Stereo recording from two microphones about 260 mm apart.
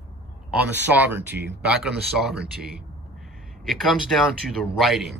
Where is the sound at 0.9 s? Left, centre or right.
Centre.